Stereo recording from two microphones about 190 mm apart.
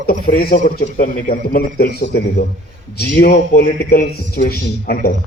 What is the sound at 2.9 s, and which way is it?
A man's voice, 55° left (ahead or behind).